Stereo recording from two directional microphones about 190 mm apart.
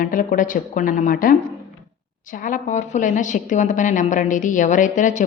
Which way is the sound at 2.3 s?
45° left (ahead or behind).